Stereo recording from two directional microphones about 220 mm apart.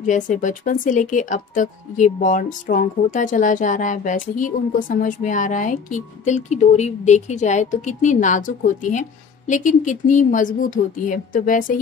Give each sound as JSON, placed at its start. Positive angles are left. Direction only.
{"t": 0.0, "sound": "speech", "side_deg": 35}